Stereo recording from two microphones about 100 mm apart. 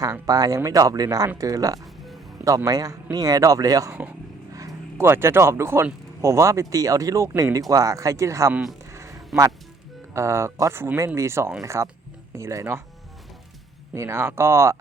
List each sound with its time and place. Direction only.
0.0 s speech: 35° right (ahead or behind)
4.5 s vehicle: 35° right (ahead or behind)
5.0 s speech: 25° right (ahead or behind)
8.9 s a sound: 30° right (ahead or behind)
10.2 s speech: 30° right (ahead or behind)
13.9 s speech: 30° right (ahead or behind)